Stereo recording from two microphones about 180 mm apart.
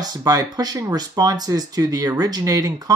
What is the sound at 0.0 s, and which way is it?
Speech, 20° right (ahead or behind).